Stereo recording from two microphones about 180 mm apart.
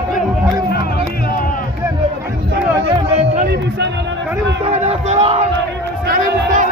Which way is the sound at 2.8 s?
35° right (ahead or behind).